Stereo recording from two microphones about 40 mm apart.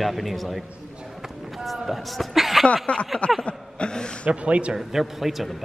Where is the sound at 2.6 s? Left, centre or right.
Left.